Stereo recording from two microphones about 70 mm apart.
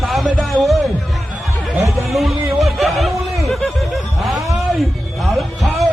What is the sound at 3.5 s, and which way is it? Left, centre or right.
Snicker, centre.